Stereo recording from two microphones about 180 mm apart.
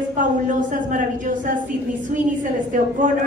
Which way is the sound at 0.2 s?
45° right (ahead or behind).